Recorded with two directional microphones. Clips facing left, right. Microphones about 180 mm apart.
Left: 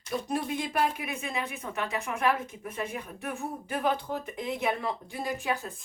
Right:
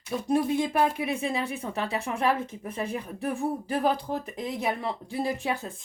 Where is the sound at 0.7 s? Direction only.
30° right (ahead or behind).